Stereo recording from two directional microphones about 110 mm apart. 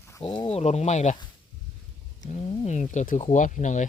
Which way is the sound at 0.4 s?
70° left (ahead or behind).